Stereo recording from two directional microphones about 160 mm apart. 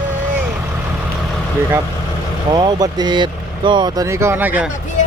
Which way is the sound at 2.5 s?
30° right (ahead or behind).